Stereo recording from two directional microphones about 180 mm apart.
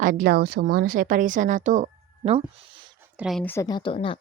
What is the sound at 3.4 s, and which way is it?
Speech, 15° left (ahead or behind).